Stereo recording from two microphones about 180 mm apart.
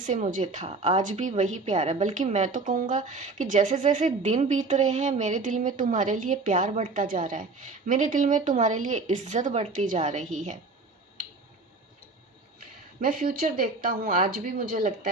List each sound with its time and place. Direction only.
0.0 s a woman's voice: 45° right (ahead or behind)
13.0 s a woman's voice: 50° right (ahead or behind)